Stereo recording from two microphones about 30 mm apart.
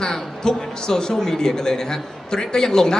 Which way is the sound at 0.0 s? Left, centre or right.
Left.